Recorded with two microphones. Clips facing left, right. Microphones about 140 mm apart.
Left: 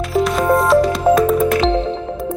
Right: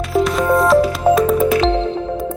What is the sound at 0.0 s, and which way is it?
Music, centre (ahead or behind).